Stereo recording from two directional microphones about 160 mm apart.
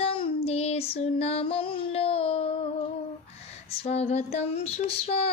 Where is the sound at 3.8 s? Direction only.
40° left (ahead or behind).